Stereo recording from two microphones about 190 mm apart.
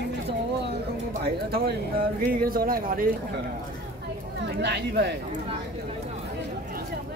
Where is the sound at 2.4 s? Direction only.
50° right (ahead or behind).